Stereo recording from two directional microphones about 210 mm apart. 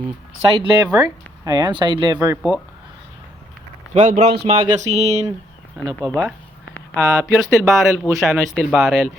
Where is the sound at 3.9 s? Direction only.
30° right (ahead or behind).